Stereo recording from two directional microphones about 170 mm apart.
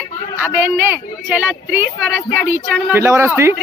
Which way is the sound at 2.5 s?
15° right (ahead or behind).